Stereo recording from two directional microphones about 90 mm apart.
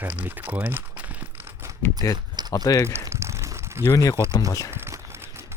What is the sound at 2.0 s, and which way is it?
Speech, 40° left (ahead or behind).